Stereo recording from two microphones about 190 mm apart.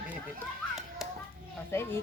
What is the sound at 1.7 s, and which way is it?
Speech, 10° left (ahead or behind).